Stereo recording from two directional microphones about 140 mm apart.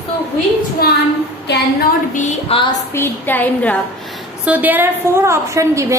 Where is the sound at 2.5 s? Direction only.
45° left (ahead or behind).